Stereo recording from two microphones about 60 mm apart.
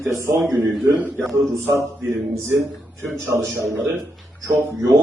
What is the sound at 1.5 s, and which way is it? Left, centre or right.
A man's voice, right.